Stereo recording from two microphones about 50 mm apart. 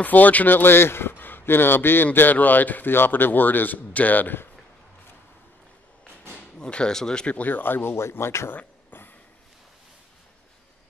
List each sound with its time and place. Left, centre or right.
0.0 s speech: left
2.1 s speech: left
6.6 s speech: centre
7.3 s speech: left